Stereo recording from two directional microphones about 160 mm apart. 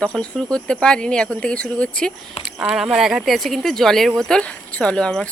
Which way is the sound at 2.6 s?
5° right (ahead or behind).